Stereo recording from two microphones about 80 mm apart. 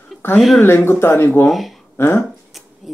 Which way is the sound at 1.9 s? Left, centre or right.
Left.